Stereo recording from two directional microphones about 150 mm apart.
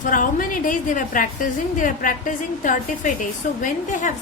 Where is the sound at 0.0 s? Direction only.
65° left (ahead or behind).